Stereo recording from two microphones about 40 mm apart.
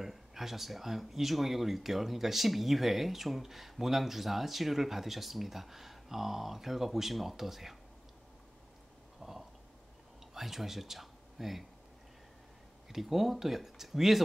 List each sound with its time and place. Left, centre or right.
0.0 s speech: centre
9.2 s a sound: centre
10.3 s speech: centre
12.9 s speech: centre